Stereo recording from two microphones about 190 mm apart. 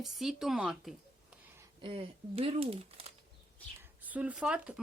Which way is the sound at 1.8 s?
30° right (ahead or behind).